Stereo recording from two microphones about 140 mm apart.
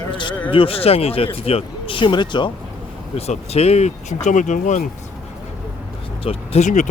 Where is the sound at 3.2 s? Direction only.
45° left (ahead or behind); by 4.9 s 65° left (ahead or behind).